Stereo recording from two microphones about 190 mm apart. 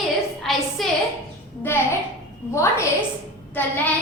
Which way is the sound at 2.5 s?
15° left (ahead or behind).